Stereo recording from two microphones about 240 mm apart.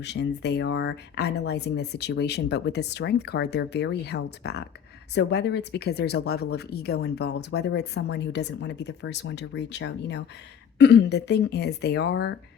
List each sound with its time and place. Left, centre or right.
0.0 s speech: left